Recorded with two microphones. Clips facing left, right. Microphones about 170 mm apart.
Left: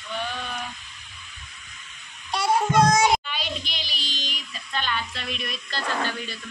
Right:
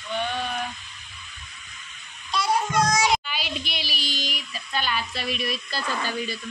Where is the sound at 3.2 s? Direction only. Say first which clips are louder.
Even; 5° right (ahead or behind).